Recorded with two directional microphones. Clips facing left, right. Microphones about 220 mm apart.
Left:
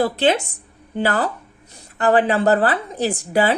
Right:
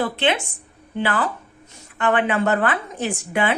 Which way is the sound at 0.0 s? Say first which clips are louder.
Left 4 dB; 40° left (ahead or behind).